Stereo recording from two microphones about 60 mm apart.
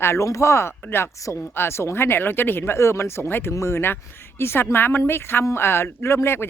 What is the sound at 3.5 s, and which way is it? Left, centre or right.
Speech, left.